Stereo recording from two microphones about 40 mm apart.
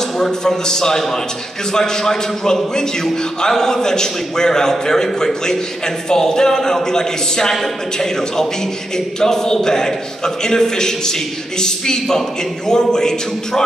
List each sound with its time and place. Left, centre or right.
0.2 s a man's voice: centre